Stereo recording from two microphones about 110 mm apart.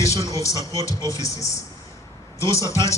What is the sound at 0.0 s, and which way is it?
Speech, 30° left (ahead or behind).